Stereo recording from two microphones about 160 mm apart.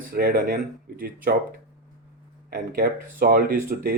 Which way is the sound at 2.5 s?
65° right (ahead or behind).